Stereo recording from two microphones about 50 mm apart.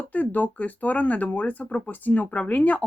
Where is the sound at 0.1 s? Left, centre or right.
Left.